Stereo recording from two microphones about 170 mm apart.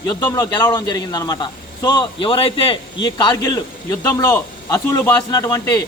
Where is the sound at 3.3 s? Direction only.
20° left (ahead or behind).